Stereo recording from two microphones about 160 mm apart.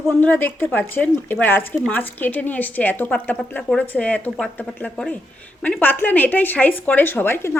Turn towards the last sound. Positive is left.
turn(degrees=15)  # may be behind; listen again after turning